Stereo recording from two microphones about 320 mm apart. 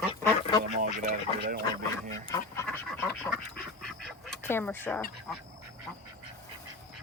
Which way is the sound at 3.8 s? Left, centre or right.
Centre.